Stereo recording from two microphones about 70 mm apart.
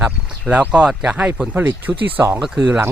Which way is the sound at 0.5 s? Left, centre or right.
Centre.